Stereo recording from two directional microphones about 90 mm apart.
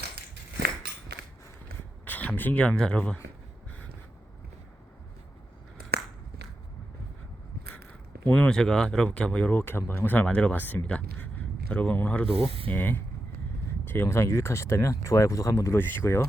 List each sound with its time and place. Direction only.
2.0 s speech: 20° left (ahead or behind)
8.2 s speech: 20° left (ahead or behind)
8.4 s speech: 5° left (ahead or behind)
12.5 s speech: 90° right
12.7 s speech: 20° left (ahead or behind)